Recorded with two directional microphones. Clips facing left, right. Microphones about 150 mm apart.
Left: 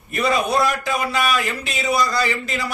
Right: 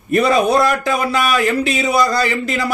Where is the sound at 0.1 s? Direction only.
50° right (ahead or behind).